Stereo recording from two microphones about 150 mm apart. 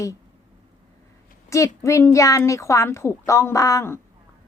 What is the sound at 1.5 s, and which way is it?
A woman's voice, 20° left (ahead or behind).